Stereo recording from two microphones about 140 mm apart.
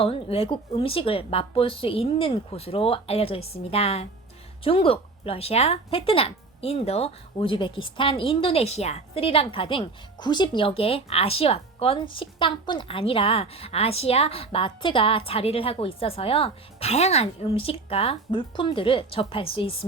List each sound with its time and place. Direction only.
0.0 s speech: 45° left (ahead or behind)